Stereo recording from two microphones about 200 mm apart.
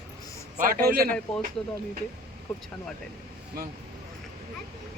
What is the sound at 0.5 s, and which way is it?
Speech, 45° right (ahead or behind).